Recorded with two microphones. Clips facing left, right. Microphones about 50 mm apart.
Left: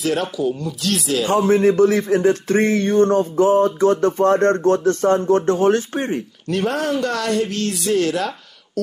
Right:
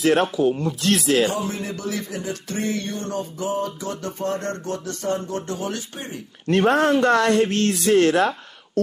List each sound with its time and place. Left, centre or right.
0.0 s speech: right
1.3 s speech: left
6.4 s speech: right